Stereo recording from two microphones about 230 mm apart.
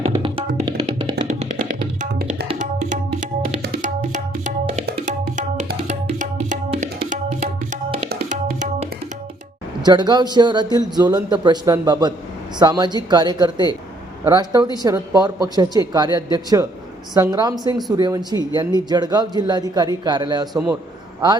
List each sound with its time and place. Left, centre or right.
0.1 s music: centre
2.0 s tabla: right
8.1 s music: right
9.8 s a man's voice: centre
20.5 s a man's voice: centre